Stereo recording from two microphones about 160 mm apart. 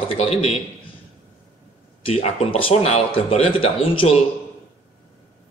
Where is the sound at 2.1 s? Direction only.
40° left (ahead or behind).